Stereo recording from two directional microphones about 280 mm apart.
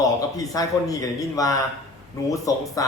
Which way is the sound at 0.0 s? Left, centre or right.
Centre.